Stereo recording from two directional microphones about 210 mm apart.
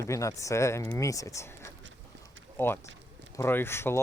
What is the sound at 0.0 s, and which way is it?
Speech, 15° left (ahead or behind).